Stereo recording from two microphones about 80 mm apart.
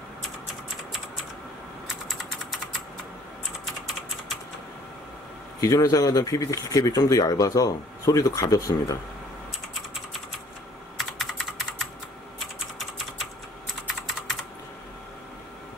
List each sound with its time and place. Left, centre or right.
3.6 s typing: centre
5.6 s speech: left
11.0 s typing: centre